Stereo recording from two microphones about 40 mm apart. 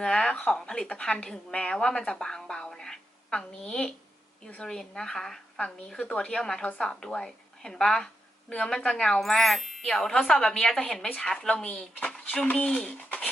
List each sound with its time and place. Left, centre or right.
0.0 s a woman's voice: centre
5.5 s a woman's voice: left
9.2 s speech: centre
9.8 s a woman's voice: centre